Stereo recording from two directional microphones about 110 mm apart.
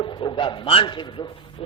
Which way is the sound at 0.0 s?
40° left (ahead or behind).